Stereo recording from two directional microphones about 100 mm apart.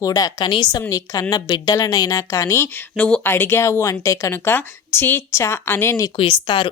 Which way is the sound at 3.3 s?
25° left (ahead or behind).